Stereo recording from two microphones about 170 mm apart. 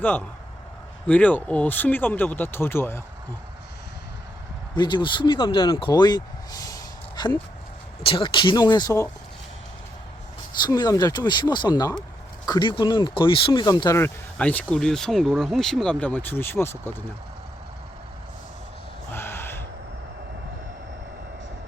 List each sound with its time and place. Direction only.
0.0 s speech: 10° left (ahead or behind)
4.7 s speech: 25° left (ahead or behind)
10.6 s speech: 25° left (ahead or behind)
19.1 s gasp: 15° left (ahead or behind)